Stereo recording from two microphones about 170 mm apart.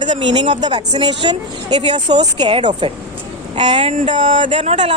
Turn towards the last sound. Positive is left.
turn(degrees=-35)  # may be behind; listen again after turning